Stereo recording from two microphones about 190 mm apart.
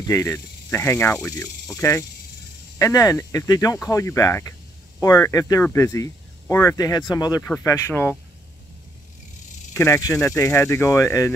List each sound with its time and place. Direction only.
0.0 s speech: 15° left (ahead or behind)
9.8 s speech: 15° left (ahead or behind)